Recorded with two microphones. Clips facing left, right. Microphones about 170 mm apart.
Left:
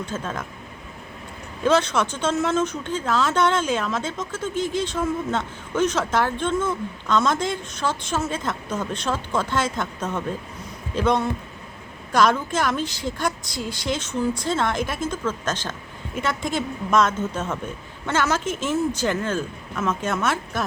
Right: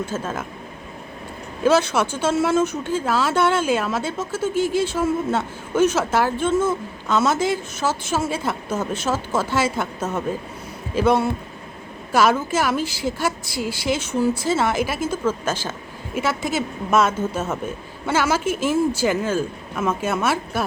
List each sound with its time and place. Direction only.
0.0 s speech: 5° right (ahead or behind)
1.6 s speech: 10° right (ahead or behind)